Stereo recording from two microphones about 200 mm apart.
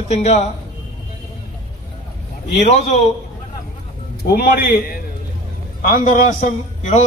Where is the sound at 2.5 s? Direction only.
35° left (ahead or behind).